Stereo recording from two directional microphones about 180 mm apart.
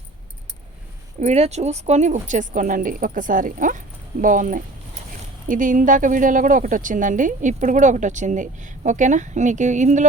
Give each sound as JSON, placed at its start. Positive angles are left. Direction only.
{"t": 1.2, "sound": "speech", "side_deg": -40}